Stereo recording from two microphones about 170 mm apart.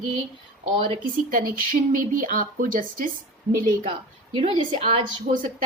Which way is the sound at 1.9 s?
50° right (ahead or behind).